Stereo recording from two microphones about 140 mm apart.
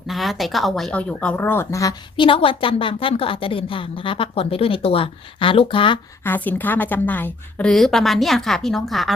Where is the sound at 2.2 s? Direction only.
40° left (ahead or behind).